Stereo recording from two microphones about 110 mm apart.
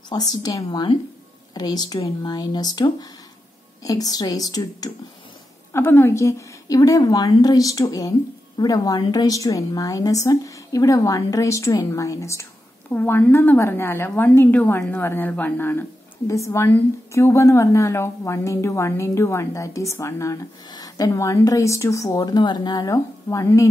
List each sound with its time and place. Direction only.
0.1 s a woman's voice: 35° left (ahead or behind)
0.7 s speech: 50° left (ahead or behind)
1.5 s a woman's voice: 40° left (ahead or behind)
5.7 s a woman's voice: 20° left (ahead or behind)
12.9 s a woman's voice: 15° left (ahead or behind)
16.3 s a woman's voice: 30° left (ahead or behind)